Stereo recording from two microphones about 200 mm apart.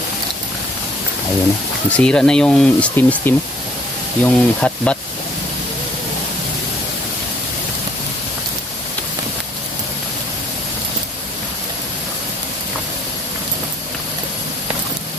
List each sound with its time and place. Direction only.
1.9 s speech: 5° left (ahead or behind)